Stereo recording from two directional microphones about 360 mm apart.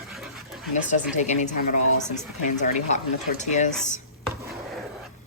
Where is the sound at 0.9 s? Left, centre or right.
Centre.